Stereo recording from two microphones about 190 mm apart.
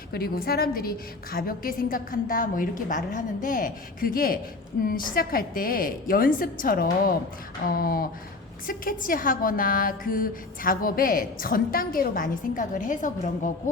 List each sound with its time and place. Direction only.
0.1 s a woman's voice: 55° left (ahead or behind)